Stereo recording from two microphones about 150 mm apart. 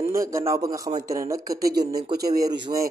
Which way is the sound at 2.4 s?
25° right (ahead or behind).